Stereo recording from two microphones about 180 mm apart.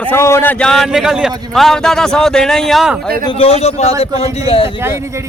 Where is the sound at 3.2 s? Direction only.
35° left (ahead or behind).